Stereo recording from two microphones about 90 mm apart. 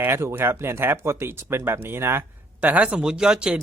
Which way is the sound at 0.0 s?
30° right (ahead or behind).